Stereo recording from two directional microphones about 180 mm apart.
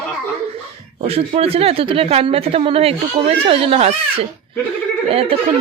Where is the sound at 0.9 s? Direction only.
35° right (ahead or behind).